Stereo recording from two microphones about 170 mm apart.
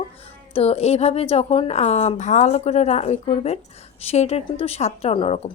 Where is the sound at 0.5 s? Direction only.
35° left (ahead or behind).